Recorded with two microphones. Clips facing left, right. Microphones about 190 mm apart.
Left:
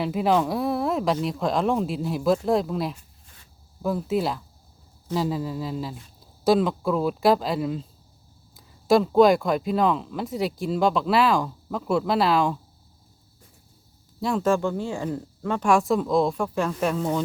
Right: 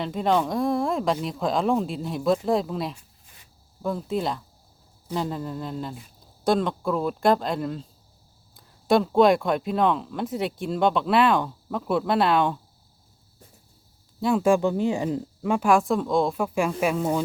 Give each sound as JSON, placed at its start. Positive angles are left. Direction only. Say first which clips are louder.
{"t": 0.0, "sound": "speech", "louder": "left 1 dB", "side_deg": 5}
{"t": 14.2, "sound": "speech", "louder": "right 3 dB", "side_deg": 0}
{"t": 14.4, "sound": "speech", "louder": "right 3 dB", "side_deg": -15}
{"t": 15.7, "sound": "speech", "louder": "left 2 dB", "side_deg": 0}